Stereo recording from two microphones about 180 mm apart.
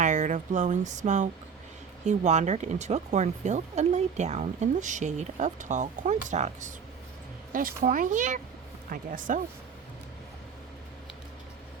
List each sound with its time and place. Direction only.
0.0 s speech: 45° right (ahead or behind)